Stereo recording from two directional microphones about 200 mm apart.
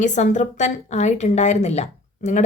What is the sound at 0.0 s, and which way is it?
A woman's voice, 35° left (ahead or behind).